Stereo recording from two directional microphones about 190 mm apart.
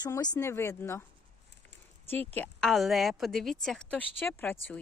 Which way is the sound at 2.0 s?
10° left (ahead or behind).